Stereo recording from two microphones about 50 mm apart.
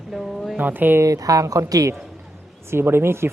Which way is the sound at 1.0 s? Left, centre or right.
Right.